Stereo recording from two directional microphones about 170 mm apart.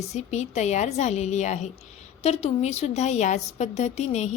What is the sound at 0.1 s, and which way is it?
A woman's voice, 40° left (ahead or behind).